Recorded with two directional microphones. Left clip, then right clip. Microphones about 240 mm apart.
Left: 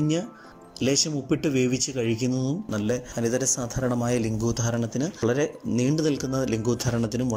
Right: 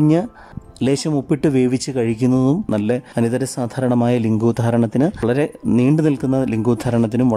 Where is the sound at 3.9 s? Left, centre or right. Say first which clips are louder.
Right 8 dB; right.